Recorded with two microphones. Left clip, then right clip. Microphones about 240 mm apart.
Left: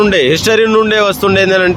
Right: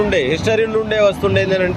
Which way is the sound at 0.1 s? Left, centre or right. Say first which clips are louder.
Left 6 dB; left.